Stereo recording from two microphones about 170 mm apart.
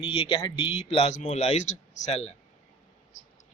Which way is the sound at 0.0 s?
30° left (ahead or behind).